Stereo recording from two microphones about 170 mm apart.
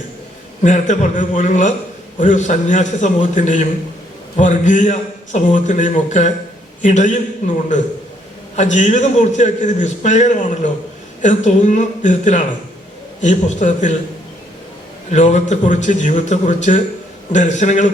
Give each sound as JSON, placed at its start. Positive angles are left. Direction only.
{"t": 0.6, "sound": "a man's voice", "side_deg": 45}
{"t": 15.1, "sound": "a man's voice", "side_deg": 45}